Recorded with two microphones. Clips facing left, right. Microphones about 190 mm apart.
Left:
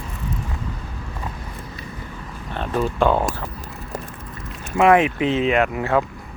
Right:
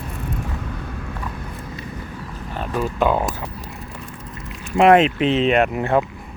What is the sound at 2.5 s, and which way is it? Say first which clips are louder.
Speech: left 1 dB; 5° right (ahead or behind).